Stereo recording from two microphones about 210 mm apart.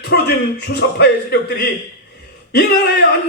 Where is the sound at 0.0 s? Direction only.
50° left (ahead or behind).